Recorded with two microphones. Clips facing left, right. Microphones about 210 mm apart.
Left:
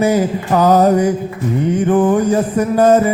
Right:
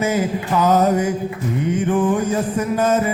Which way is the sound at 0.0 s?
40° left (ahead or behind).